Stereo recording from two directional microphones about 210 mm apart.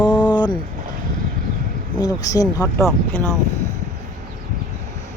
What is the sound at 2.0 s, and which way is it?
Speech, 15° left (ahead or behind).